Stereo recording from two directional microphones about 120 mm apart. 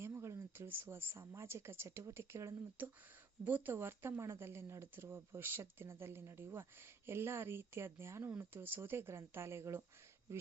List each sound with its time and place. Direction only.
0.0 s speech: 20° right (ahead or behind)